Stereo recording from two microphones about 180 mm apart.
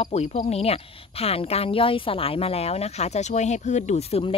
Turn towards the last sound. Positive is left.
turn(degrees=35)  # may be behind; listen again after turning